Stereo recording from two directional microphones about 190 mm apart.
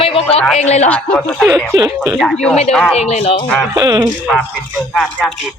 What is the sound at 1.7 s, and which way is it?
Speech, 20° right (ahead or behind).